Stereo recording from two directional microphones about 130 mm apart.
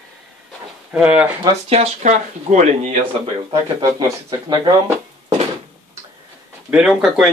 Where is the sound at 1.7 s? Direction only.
60° right (ahead or behind).